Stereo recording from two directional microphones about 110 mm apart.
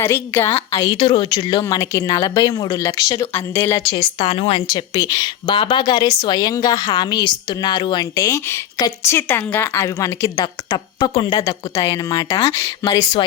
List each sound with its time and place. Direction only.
0.0 s a woman's voice: 25° left (ahead or behind)
0.9 s a woman's voice: 45° left (ahead or behind); by 3.8 s 30° left (ahead or behind)
3.8 s a woman's voice: 50° left (ahead or behind)
4.7 s speech: 30° left (ahead or behind)
5.5 s a woman's voice: 50° left (ahead or behind); by 10.4 s 30° left (ahead or behind)
10.4 s speech: 40° left (ahead or behind)
11.4 s a woman's voice: 30° left (ahead or behind)